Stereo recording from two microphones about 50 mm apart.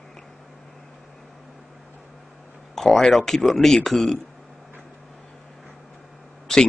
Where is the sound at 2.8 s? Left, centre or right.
Centre.